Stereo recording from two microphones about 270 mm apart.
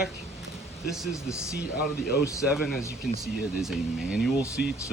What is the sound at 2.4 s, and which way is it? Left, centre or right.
Speech, centre.